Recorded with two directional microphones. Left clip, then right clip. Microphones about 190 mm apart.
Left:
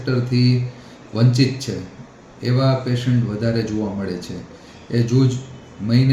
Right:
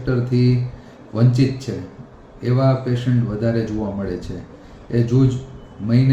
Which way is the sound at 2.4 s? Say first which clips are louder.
Right 1 dB; 5° right (ahead or behind).